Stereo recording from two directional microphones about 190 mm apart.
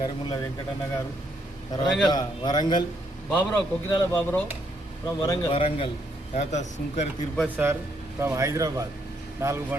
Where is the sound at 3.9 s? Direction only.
15° left (ahead or behind).